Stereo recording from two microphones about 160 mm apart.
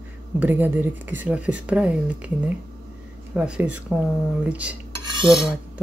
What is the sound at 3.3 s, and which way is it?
Speech, 5° right (ahead or behind).